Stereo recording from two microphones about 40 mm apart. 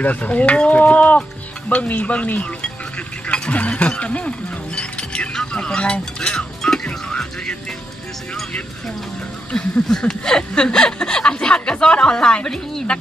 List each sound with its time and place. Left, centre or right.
0.0 s speech: left
3.3 s a sound: left
3.9 s speech: left
5.3 s music: left
9.5 s speech: centre